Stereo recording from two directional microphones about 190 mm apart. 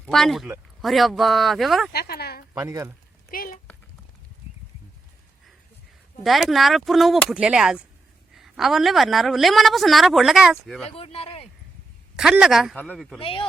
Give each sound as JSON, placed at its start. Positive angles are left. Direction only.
{"t": 0.0, "sound": "a woman's voice", "side_deg": 0}
{"t": 1.9, "sound": "speech", "side_deg": 55}
{"t": 2.6, "sound": "speech", "side_deg": -15}
{"t": 3.3, "sound": "speech", "side_deg": 50}
{"t": 6.2, "sound": "a woman's voice", "side_deg": 0}
{"t": 10.9, "sound": "speech", "side_deg": 30}
{"t": 12.1, "sound": "a woman's voice", "side_deg": -5}
{"t": 13.1, "sound": "speech", "side_deg": 30}